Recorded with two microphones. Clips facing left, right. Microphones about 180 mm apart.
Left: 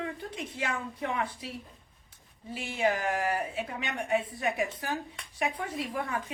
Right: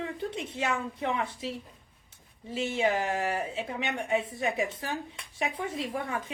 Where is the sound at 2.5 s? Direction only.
25° right (ahead or behind).